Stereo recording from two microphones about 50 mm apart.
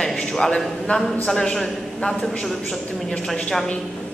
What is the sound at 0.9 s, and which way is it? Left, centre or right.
Speech, left.